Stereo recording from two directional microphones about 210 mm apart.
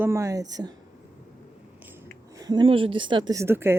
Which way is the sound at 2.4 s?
20° right (ahead or behind).